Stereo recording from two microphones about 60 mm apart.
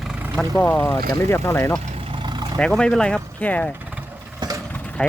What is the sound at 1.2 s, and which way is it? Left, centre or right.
Speech, left.